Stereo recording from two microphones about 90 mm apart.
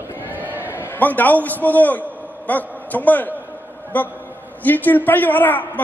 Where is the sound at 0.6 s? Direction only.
25° left (ahead or behind).